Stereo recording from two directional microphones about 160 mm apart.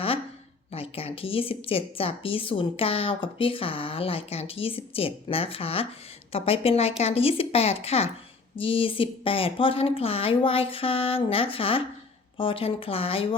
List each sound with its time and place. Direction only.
0.7 s speech: 35° left (ahead or behind)